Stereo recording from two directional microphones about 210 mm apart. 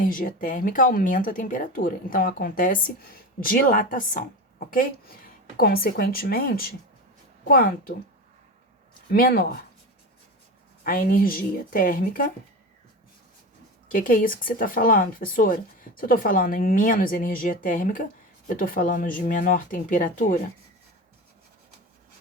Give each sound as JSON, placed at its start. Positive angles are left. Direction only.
{"t": 0.0, "sound": "a woman's voice", "side_deg": 40}
{"t": 9.1, "sound": "a woman's voice", "side_deg": 45}
{"t": 10.8, "sound": "a woman's voice", "side_deg": 40}
{"t": 13.8, "sound": "speech", "side_deg": 40}